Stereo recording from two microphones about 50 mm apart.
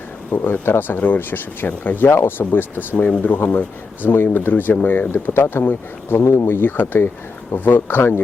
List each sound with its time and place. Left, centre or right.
0.3 s speech: left
2.0 s speech: left
4.0 s speech: left
6.6 s speech: left